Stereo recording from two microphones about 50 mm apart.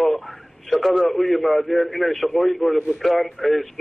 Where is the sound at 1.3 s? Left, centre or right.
Centre.